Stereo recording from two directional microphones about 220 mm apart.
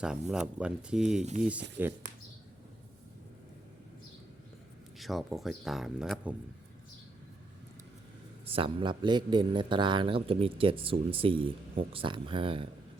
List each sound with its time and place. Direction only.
0.0 s speech: 5° right (ahead or behind)
4.9 s speech: centre (ahead or behind)
8.5 s speech: 20° right (ahead or behind)